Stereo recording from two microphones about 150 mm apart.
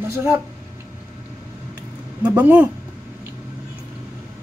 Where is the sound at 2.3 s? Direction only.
10° right (ahead or behind).